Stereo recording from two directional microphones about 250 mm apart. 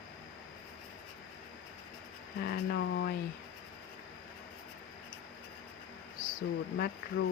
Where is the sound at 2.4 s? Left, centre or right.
Left.